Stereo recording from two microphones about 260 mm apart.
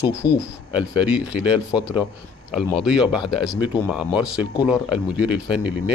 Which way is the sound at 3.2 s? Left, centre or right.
Centre.